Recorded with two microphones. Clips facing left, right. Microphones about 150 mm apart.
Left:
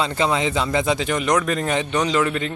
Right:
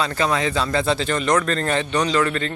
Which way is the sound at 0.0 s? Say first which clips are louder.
Left 1 dB; 20° left (ahead or behind).